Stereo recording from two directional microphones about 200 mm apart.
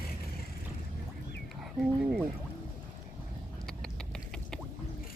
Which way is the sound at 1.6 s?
Centre (ahead or behind).